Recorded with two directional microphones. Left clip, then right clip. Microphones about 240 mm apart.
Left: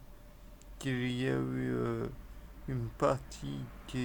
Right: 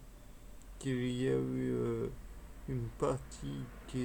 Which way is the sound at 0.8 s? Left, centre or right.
Left.